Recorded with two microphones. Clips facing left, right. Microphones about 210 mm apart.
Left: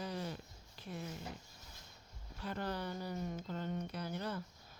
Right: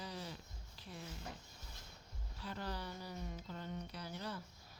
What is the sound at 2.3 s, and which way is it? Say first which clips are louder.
Speech: left 5 dB; 55° left (ahead or behind).